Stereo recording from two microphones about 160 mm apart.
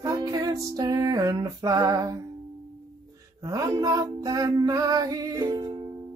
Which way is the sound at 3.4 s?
20° right (ahead or behind).